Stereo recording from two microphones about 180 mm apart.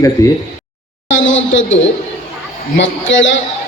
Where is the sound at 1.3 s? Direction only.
90° left.